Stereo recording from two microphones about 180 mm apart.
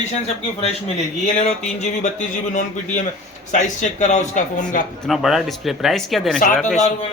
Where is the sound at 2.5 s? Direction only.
45° left (ahead or behind).